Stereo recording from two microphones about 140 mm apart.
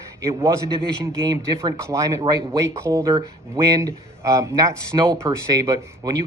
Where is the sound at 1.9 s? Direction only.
25° right (ahead or behind).